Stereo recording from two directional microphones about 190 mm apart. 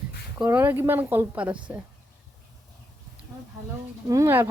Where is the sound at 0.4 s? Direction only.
10° right (ahead or behind).